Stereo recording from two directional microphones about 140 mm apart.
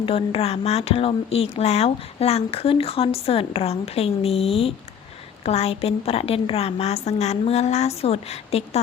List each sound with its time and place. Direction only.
0.0 s speech: 40° left (ahead or behind)